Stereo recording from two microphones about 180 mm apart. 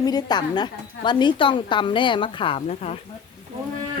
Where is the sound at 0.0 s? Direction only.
20° left (ahead or behind).